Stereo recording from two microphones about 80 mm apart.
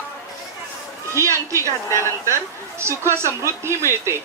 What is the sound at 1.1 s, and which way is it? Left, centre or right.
Speech, right.